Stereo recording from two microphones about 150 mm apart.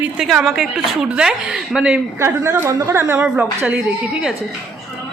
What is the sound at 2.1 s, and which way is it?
A woman's voice, 20° right (ahead or behind).